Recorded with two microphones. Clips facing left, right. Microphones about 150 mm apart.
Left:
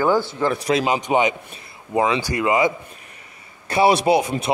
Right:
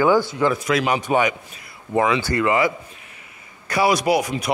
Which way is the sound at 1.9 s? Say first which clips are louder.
Right 1 dB; 10° left (ahead or behind).